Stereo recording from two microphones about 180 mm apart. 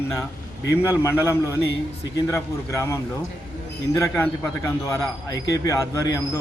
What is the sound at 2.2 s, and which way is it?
Speech, 15° left (ahead or behind).